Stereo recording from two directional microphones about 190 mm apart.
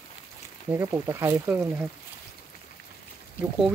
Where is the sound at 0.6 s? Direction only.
10° right (ahead or behind).